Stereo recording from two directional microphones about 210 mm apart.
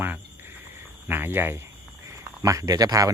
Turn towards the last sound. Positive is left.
turn(degrees=-15)  # may be behind; listen again after turning